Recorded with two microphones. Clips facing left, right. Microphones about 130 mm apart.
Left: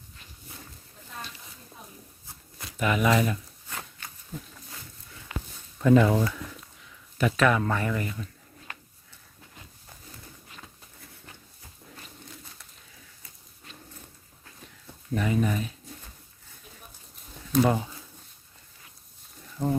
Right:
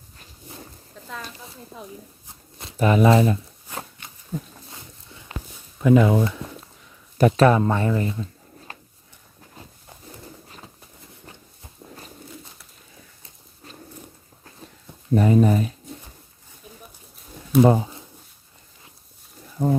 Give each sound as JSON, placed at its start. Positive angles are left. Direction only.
{"t": 1.0, "sound": "a sound", "side_deg": -90}
{"t": 1.8, "sound": "speech", "side_deg": -90}
{"t": 2.2, "sound": "shuffling cards", "side_deg": -25}
{"t": 5.8, "sound": "speech", "side_deg": -15}
{"t": 6.2, "sound": "a sound", "side_deg": -25}
{"t": 7.2, "sound": "speech", "side_deg": -35}
{"t": 10.5, "sound": "a sound", "side_deg": -25}
{"t": 15.1, "sound": "speech", "side_deg": -35}
{"t": 17.7, "sound": "speech", "side_deg": -25}
{"t": 19.6, "sound": "speech", "side_deg": -15}